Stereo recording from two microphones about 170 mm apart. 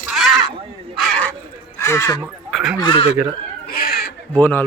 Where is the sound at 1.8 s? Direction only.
15° left (ahead or behind).